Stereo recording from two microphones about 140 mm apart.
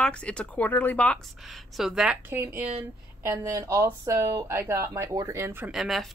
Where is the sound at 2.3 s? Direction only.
15° right (ahead or behind).